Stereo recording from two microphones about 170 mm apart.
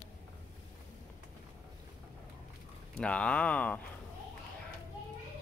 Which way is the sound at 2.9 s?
5° left (ahead or behind).